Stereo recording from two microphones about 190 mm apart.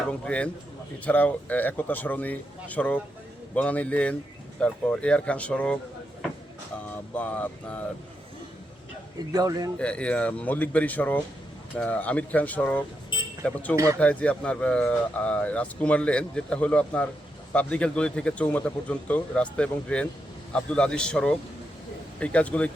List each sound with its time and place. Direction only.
0.1 s speech: 5° left (ahead or behind)
7.1 s speech: 5° left (ahead or behind)
9.1 s speech: 20° right (ahead or behind)
9.7 s speech: 5° left (ahead or behind)
13.7 s speech: 15° right (ahead or behind)
14.0 s speech: 5° left (ahead or behind)